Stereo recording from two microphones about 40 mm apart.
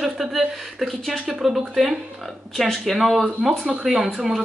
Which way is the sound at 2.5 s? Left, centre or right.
Centre.